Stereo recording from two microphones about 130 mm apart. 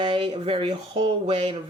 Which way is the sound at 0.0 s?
45° right (ahead or behind).